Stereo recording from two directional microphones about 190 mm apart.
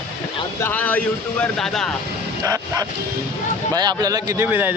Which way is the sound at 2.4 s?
20° right (ahead or behind).